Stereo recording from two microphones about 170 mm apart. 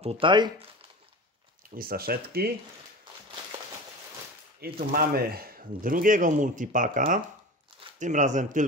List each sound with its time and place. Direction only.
0.0 s speech: 30° right (ahead or behind)
1.8 s speech: 60° right (ahead or behind)
4.6 s speech: 65° right (ahead or behind)
8.0 s speech: 45° right (ahead or behind)